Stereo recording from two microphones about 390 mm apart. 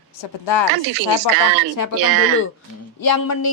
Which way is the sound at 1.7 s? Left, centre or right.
Left.